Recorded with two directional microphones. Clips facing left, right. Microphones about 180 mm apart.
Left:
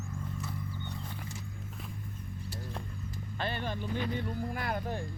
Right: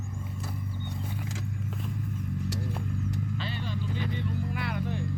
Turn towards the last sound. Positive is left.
turn(degrees=45)  # may be behind; listen again after turning